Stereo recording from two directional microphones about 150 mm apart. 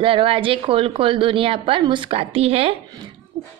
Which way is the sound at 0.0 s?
35° right (ahead or behind).